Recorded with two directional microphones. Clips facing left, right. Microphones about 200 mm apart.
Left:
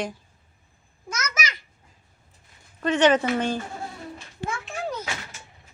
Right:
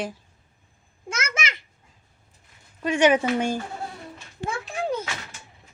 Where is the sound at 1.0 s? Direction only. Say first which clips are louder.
Right 1 dB; 25° right (ahead or behind).